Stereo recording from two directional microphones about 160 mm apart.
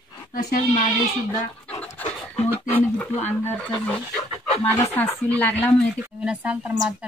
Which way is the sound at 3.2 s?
10° left (ahead or behind).